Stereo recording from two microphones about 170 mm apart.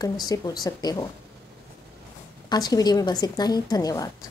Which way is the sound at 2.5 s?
25° left (ahead or behind).